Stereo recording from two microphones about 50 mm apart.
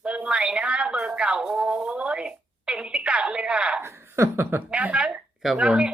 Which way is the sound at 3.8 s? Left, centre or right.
Right.